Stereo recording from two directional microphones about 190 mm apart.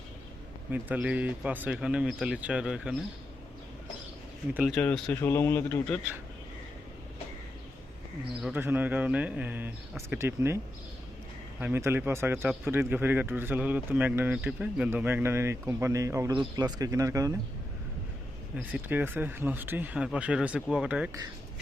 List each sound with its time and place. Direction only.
0.7 s speech: 10° right (ahead or behind)
4.5 s speech: 5° right (ahead or behind); by 6.0 s 15° left (ahead or behind)
8.4 s speech: 5° right (ahead or behind)
11.6 s speech: 10° right (ahead or behind)
18.5 s speech: 10° right (ahead or behind)